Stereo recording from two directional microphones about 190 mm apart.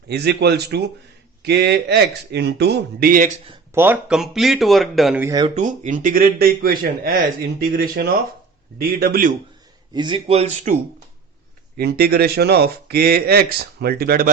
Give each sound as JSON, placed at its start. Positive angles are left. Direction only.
{"t": 0.1, "sound": "speech", "side_deg": -60}
{"t": 3.8, "sound": "speech", "side_deg": -10}
{"t": 5.2, "sound": "speech", "side_deg": -20}
{"t": 5.5, "sound": "speech", "side_deg": -40}
{"t": 9.9, "sound": "speech", "side_deg": -25}
{"t": 11.8, "sound": "speech", "side_deg": -55}